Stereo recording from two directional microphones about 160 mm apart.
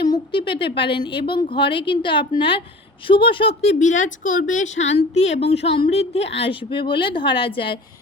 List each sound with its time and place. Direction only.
0.0 s a woman's voice: 30° left (ahead or behind)